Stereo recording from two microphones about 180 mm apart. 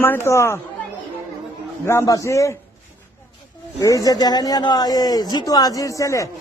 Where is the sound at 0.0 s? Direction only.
15° left (ahead or behind).